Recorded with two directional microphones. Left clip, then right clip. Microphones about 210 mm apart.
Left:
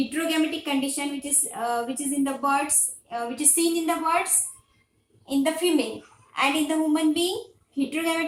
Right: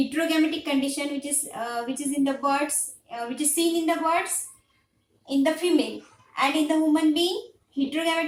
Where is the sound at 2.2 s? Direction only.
15° right (ahead or behind).